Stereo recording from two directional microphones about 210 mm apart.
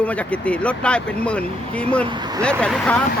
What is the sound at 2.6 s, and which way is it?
Speech, 5° left (ahead or behind).